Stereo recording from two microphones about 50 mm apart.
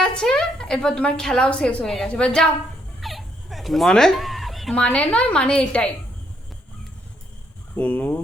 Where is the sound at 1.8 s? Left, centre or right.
Centre.